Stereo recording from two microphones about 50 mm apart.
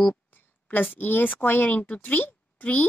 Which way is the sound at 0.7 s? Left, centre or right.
Left.